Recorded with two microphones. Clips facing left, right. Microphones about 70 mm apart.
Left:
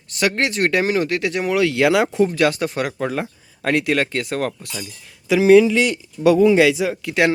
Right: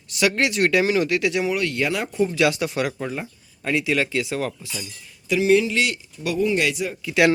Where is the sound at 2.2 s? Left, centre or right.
Left.